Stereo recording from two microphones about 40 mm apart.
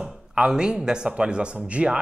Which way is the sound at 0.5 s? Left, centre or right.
Centre.